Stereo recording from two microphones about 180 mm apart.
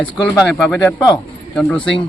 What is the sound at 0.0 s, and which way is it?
Speech, centre (ahead or behind).